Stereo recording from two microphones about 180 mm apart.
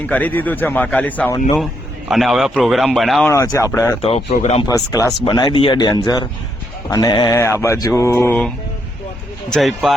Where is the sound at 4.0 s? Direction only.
35° left (ahead or behind).